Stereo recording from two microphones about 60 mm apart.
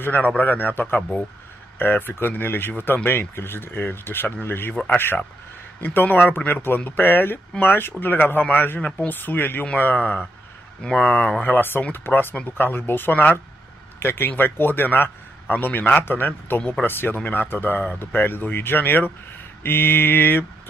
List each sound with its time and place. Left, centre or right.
0.0 s a man's voice: left
10.8 s speech: left
11.4 s speech: left